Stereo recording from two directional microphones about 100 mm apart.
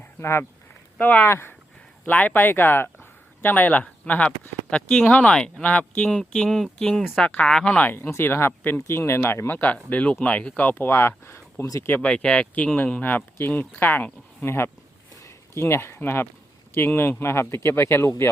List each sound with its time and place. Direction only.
0.0 s a sound: 25° left (ahead or behind)
0.9 s speech: 15° left (ahead or behind)
11.9 s speech: 20° left (ahead or behind)